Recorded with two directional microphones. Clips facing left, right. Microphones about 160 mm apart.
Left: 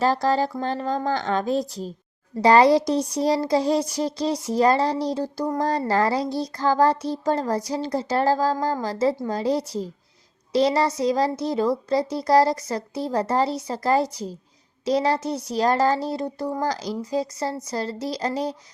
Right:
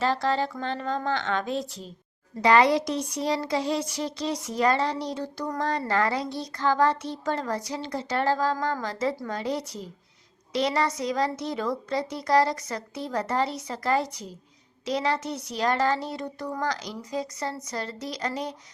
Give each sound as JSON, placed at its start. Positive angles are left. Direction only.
{"t": 0.0, "sound": "speech", "side_deg": 40}